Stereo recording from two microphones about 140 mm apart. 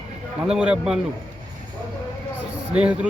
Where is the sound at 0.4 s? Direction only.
5° right (ahead or behind).